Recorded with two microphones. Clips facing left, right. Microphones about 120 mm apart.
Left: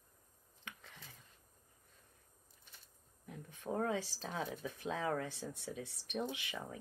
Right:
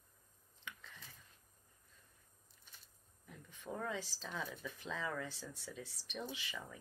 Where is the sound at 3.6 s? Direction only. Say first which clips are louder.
Left 6 dB; 45° left (ahead or behind).